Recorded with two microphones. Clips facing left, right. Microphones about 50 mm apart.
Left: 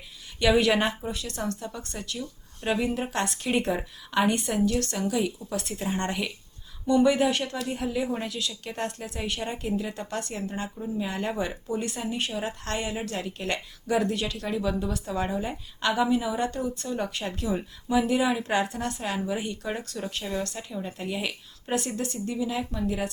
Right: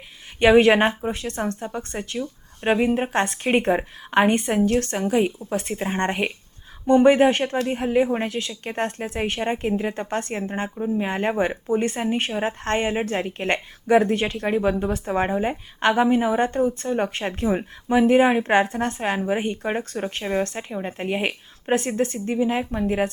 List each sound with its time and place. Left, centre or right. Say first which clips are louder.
0.3 s speech: right 7 dB; right